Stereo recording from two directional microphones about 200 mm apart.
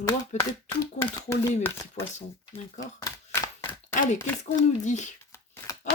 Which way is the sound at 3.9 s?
40° left (ahead or behind).